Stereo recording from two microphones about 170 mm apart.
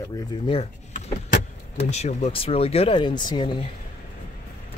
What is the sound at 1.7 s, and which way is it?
Speech, 40° left (ahead or behind).